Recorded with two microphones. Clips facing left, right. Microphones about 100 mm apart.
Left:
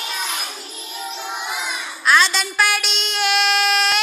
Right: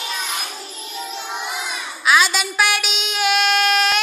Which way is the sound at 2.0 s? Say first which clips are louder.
Even; 5° right (ahead or behind).